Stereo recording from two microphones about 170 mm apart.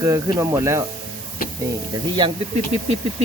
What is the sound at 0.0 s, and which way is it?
Speech, 15° right (ahead or behind).